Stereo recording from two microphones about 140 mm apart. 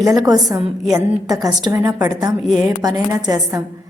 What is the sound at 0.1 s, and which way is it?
A woman's voice, 25° right (ahead or behind).